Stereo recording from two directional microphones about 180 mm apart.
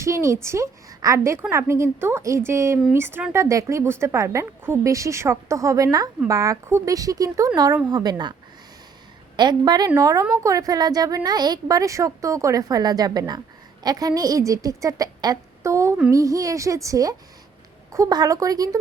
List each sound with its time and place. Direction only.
0.0 s a woman's voice: 15° right (ahead or behind)